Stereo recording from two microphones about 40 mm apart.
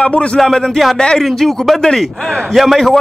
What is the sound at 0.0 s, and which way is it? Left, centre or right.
Speech, left.